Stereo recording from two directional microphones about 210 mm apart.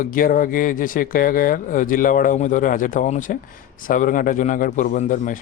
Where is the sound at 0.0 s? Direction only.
40° left (ahead or behind).